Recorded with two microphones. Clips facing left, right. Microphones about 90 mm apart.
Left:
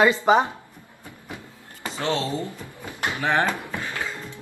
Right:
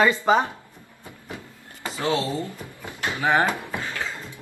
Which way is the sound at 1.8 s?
20° right (ahead or behind).